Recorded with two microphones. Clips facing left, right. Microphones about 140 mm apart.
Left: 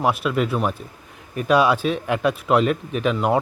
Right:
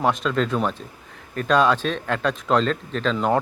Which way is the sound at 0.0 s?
10° left (ahead or behind).